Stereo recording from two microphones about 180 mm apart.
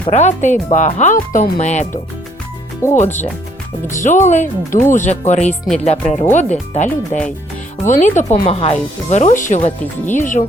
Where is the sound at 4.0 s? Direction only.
45° left (ahead or behind).